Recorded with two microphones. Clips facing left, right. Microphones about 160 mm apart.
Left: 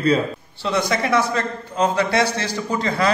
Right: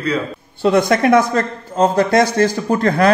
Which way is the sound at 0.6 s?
50° right (ahead or behind).